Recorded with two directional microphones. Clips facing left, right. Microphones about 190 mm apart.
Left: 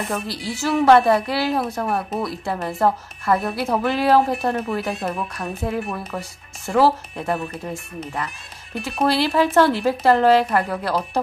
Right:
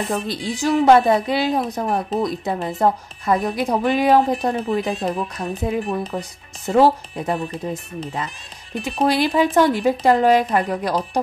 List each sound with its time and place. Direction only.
0.1 s a woman's voice: 20° right (ahead or behind)